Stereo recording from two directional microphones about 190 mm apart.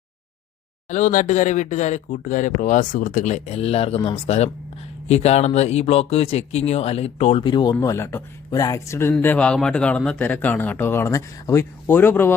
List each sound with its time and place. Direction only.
0.9 s speech: 40° left (ahead or behind); by 12.3 s 10° left (ahead or behind)